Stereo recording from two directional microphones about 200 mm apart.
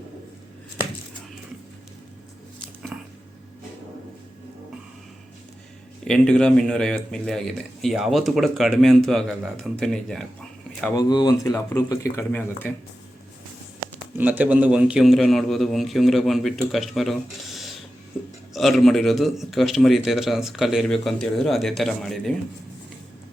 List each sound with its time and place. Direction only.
2.9 s a sound: 5° right (ahead or behind)
6.1 s speech: 5° left (ahead or behind)
10.9 s speech: 20° left (ahead or behind)
14.2 s speech: 10° right (ahead or behind)